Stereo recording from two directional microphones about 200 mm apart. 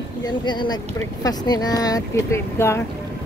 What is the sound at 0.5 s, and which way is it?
Speech, 20° left (ahead or behind).